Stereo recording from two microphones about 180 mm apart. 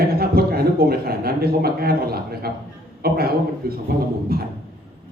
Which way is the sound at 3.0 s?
60° right (ahead or behind).